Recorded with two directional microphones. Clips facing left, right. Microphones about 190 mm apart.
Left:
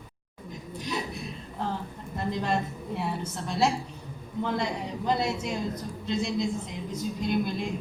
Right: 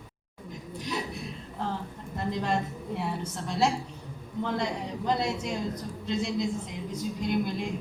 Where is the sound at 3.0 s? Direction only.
5° left (ahead or behind).